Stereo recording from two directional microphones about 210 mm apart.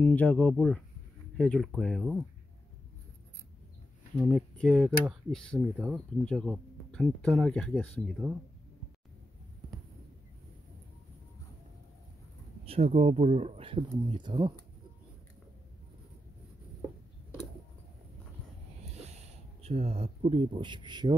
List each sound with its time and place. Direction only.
0.0 s speech: 5° left (ahead or behind)
4.3 s speech: centre (ahead or behind)
8.2 s speech: 15° right (ahead or behind)
12.6 s speech: 30° right (ahead or behind)
19.6 s speech: 30° right (ahead or behind)